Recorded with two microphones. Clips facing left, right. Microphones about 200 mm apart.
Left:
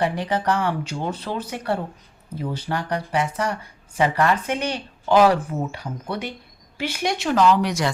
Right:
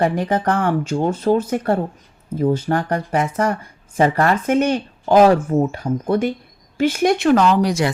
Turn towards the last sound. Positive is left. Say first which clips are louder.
# right 5 dB
turn(degrees=-35)  # may be behind; listen again after turning